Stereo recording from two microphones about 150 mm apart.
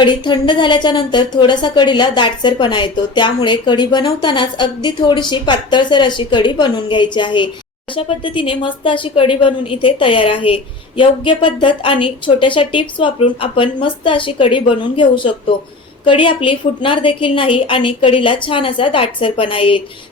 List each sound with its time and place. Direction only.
0.0 s speech: 30° left (ahead or behind)